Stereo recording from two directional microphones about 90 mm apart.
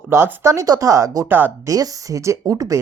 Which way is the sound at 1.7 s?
40° right (ahead or behind).